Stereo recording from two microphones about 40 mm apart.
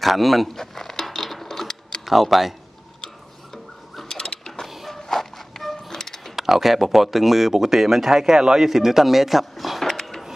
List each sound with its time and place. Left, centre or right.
0.0 s speech: centre
0.6 s a sound: centre
2.0 s speech: centre
4.1 s printer: centre
4.6 s walk: centre
4.9 s music: centre
6.3 s speech: centre